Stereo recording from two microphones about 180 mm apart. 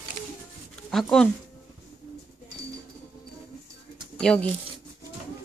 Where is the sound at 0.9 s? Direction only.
Centre (ahead or behind).